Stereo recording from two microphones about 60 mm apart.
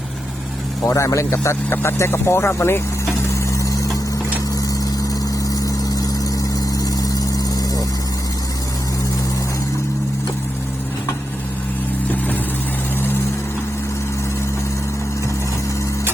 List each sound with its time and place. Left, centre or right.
0.9 s speech: left
1.7 s speech: left
3.3 s a sound: left
5.5 s vehicle: left